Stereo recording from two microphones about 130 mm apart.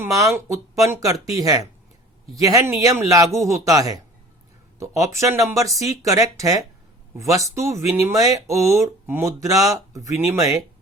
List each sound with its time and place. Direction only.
0.0 s speech: 25° right (ahead or behind)